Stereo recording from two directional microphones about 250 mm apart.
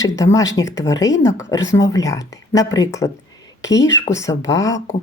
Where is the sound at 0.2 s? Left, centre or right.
Centre.